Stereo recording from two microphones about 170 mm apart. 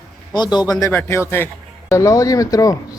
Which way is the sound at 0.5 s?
25° left (ahead or behind).